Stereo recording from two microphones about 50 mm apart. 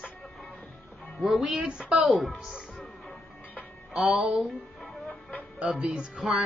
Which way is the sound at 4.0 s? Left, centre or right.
Centre.